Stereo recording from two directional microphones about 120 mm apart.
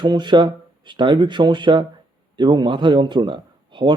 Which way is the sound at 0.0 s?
40° right (ahead or behind).